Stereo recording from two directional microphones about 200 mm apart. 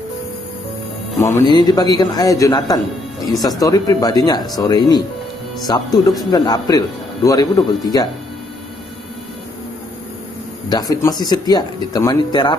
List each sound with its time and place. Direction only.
1.2 s speech: 15° left (ahead or behind)
10.7 s speech: 20° left (ahead or behind)